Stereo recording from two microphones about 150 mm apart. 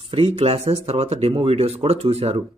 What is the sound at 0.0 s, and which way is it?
Speech, 40° right (ahead or behind).